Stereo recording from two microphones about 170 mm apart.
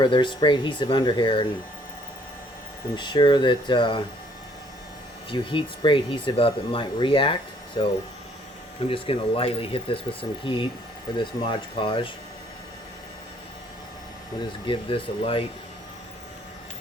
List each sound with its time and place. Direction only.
0.0 s speech: 30° left (ahead or behind)
2.9 s speech: 25° left (ahead or behind)
5.3 s speech: 30° left (ahead or behind)
14.7 s speech: 30° left (ahead or behind)